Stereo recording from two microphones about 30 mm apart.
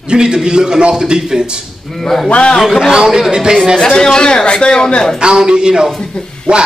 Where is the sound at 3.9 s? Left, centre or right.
Left.